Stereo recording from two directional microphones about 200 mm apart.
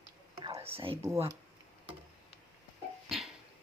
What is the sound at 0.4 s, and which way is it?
Whispering, 25° right (ahead or behind).